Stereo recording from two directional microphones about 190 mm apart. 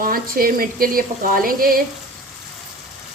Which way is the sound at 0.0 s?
50° right (ahead or behind).